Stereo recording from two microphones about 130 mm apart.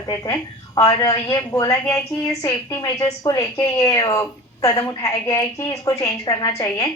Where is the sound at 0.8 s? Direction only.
30° left (ahead or behind).